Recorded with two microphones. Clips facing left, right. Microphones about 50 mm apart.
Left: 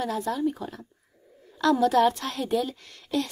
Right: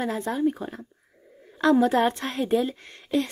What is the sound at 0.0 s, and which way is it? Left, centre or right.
A woman's voice, right.